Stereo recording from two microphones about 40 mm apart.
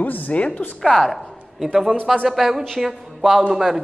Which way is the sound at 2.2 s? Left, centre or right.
Centre.